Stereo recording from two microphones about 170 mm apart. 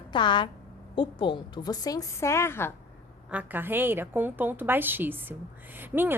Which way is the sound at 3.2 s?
10° right (ahead or behind).